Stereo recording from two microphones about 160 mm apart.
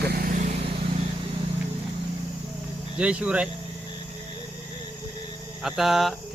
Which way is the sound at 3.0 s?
5° right (ahead or behind).